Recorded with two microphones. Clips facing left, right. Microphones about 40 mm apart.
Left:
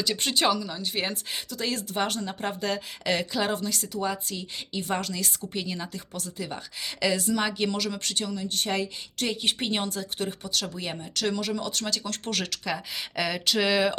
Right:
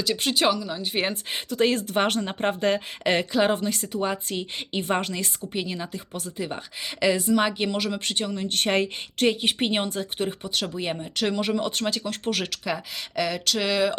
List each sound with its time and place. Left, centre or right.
0.0 s speech: centre
0.9 s speech: right
5.5 s speech: centre
8.4 s a woman's voice: right
9.4 s speech: centre
9.6 s speech: right
12.0 s speech: centre
13.1 s speech: centre